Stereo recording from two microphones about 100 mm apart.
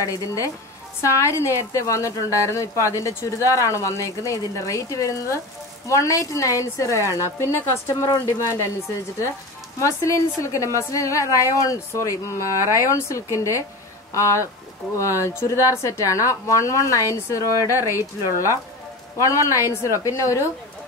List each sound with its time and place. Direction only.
0.0 s a woman's voice: 35° left (ahead or behind)
9.8 s a woman's voice: 30° left (ahead or behind)